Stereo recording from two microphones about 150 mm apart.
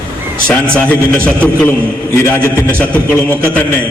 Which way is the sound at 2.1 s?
15° left (ahead or behind).